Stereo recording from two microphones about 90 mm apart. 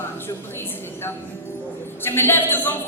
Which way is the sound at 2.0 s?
25° left (ahead or behind).